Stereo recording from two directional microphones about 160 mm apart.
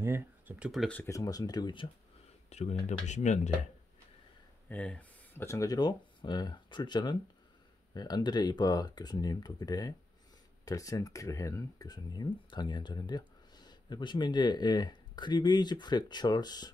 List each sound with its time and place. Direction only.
0.0 s speech: 15° right (ahead or behind)
0.7 s speech: 5° left (ahead or behind)
1.0 s speech: 20° left (ahead or behind)
2.5 s speech: 45° left (ahead or behind)
4.6 s speech: 10° left (ahead or behind); by 16.7 s 25° left (ahead or behind)